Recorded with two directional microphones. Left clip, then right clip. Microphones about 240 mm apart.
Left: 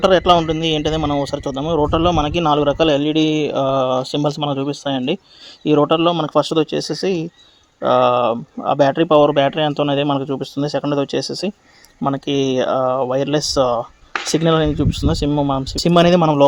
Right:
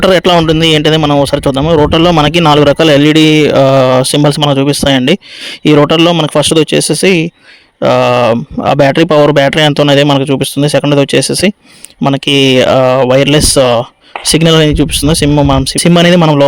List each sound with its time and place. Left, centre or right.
0.0 s speech: right